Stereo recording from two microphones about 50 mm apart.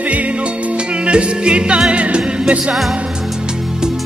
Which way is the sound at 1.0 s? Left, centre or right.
Centre.